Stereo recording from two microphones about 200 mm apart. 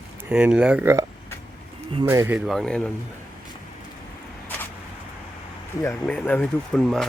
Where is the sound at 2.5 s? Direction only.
Centre (ahead or behind).